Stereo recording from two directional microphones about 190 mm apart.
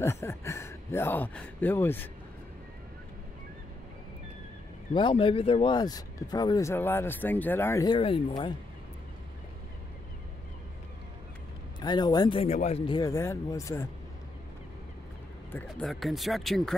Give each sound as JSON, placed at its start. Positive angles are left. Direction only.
{"t": 0.0, "sound": "speech", "side_deg": 15}
{"t": 4.9, "sound": "speech", "side_deg": 25}
{"t": 7.9, "sound": "speech", "side_deg": 30}
{"t": 11.8, "sound": "speech", "side_deg": 20}
{"t": 15.5, "sound": "speech", "side_deg": 0}